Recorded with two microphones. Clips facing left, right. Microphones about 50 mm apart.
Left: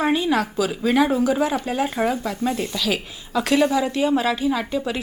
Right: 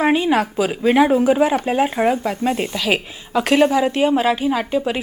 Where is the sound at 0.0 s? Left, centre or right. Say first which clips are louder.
Right 4 dB; right.